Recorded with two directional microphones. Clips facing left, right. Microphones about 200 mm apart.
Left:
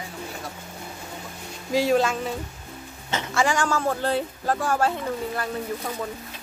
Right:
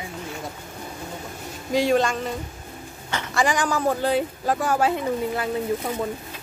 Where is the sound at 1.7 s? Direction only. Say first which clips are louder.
Right 1 dB; centre (ahead or behind).